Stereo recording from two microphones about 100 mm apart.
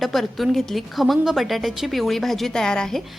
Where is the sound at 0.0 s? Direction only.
Centre (ahead or behind).